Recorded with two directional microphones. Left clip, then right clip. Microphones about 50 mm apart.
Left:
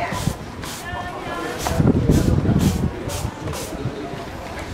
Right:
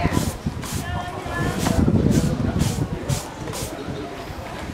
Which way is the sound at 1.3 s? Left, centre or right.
Right.